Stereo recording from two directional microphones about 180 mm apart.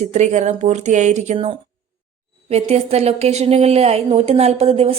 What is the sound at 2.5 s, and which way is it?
A woman's voice, 35° right (ahead or behind).